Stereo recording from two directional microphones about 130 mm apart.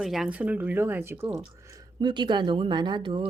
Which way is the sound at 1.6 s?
25° right (ahead or behind).